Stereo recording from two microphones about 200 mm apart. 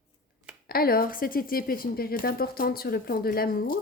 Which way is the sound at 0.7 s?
50° left (ahead or behind).